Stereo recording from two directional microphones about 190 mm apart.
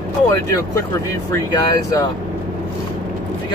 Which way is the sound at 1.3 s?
20° left (ahead or behind).